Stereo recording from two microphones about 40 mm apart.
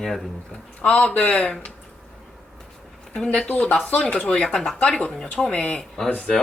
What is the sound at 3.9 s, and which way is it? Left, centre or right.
Speech, left.